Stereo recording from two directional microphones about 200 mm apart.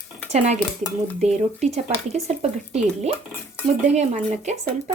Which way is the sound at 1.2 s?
35° right (ahead or behind).